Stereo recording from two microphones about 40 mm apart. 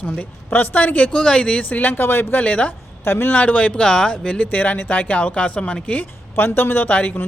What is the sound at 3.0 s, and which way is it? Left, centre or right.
Speech, left.